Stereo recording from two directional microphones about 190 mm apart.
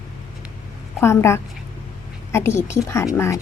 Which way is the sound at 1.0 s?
15° left (ahead or behind).